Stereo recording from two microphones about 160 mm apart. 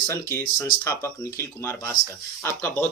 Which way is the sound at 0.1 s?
15° left (ahead or behind).